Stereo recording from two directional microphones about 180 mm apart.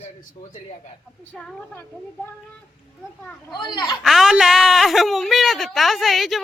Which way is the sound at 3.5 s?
25° left (ahead or behind).